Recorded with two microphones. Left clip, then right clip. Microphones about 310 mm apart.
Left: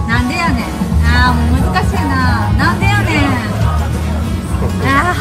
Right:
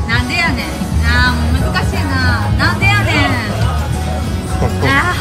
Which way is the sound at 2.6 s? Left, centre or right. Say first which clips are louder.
Right 2 dB; centre.